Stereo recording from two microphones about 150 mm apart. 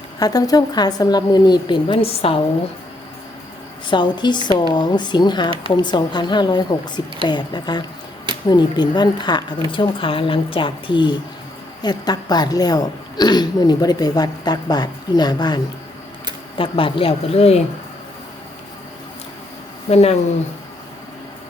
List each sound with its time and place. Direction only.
0.2 s speech: 25° left (ahead or behind)
3.8 s a woman's voice: 30° left (ahead or behind)
19.9 s speech: 45° left (ahead or behind)